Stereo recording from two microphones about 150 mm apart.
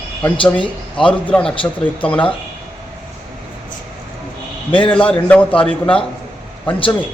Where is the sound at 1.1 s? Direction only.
10° left (ahead or behind).